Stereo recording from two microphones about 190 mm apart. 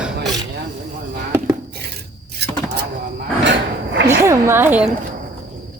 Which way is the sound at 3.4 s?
70° right (ahead or behind).